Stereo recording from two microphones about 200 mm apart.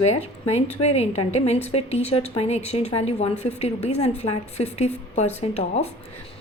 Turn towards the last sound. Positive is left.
turn(degrees=35)  # may be behind; listen again after turning